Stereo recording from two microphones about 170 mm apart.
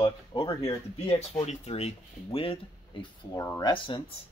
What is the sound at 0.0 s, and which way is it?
Speech, 30° left (ahead or behind).